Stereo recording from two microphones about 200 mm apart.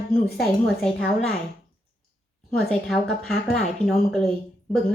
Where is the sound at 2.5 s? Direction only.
Centre (ahead or behind).